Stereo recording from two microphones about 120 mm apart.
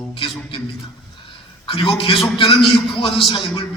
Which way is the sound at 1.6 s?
45° left (ahead or behind).